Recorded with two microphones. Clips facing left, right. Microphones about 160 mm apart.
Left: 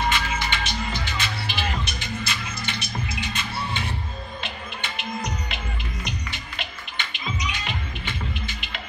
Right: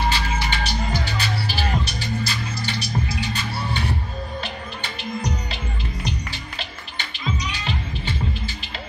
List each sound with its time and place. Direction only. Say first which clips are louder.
0.0 s music: right 1 dB; 35° right (ahead or behind)